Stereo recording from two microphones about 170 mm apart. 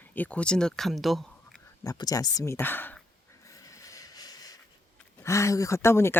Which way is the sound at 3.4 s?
20° left (ahead or behind).